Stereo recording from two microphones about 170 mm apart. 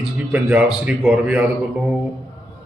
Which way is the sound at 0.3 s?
10° right (ahead or behind).